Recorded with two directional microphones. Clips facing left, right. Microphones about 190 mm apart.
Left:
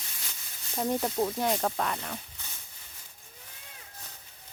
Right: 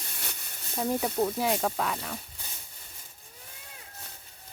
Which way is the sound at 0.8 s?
Centre (ahead or behind).